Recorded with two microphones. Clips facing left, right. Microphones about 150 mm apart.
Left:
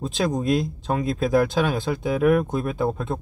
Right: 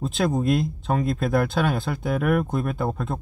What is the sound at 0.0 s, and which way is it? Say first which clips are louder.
Speech: right 1 dB; centre (ahead or behind).